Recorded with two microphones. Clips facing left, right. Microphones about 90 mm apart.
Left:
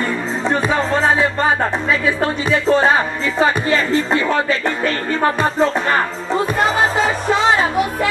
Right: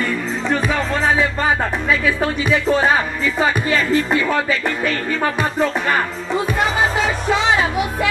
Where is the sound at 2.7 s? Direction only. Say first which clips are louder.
Left 4 dB; 30° left (ahead or behind).